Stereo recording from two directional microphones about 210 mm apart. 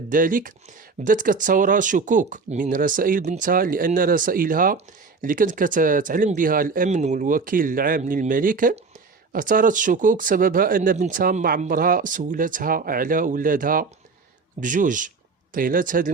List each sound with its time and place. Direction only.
0.1 s speech: 40° right (ahead or behind)